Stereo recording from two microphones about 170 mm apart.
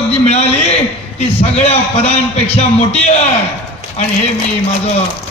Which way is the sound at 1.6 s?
35° left (ahead or behind).